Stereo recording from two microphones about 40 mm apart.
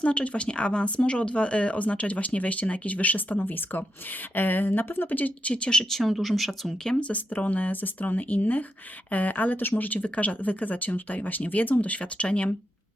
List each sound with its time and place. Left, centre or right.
0.0 s speech: left
5.9 s speech: centre
7.1 s speech: left